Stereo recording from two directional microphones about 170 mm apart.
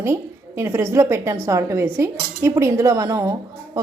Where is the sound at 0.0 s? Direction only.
15° right (ahead or behind).